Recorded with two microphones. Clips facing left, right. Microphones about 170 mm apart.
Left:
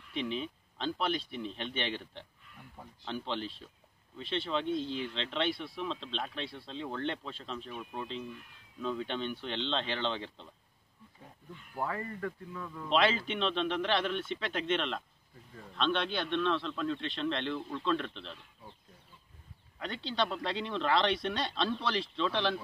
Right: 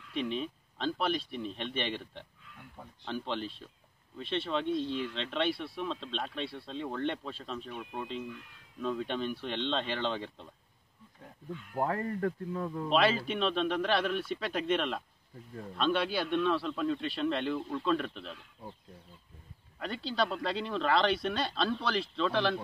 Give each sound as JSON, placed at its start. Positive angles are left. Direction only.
{"t": 0.1, "sound": "speech", "side_deg": 0}
{"t": 11.8, "sound": "a man's voice", "side_deg": -45}
{"t": 12.9, "sound": "a man's voice", "side_deg": -5}
{"t": 19.8, "sound": "speech", "side_deg": -5}